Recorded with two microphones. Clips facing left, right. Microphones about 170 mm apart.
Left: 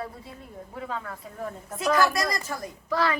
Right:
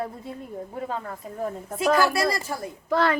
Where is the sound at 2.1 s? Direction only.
30° right (ahead or behind).